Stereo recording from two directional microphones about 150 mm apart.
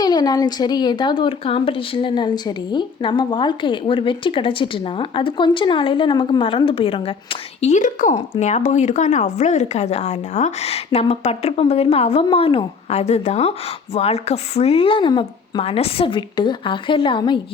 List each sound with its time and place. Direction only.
0.0 s a woman's voice: 25° left (ahead or behind)
7.6 s speech: 55° left (ahead or behind); by 17.4 s 30° left (ahead or behind)